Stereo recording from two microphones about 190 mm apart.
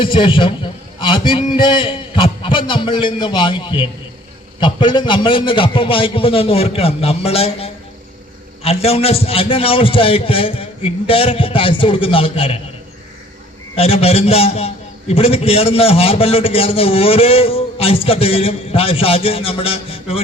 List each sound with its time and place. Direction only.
0.0 s a man's voice: 25° left (ahead or behind)
13.7 s a man's voice: 30° left (ahead or behind)